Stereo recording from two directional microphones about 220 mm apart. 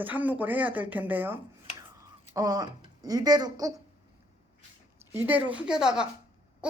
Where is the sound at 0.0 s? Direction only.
5° right (ahead or behind).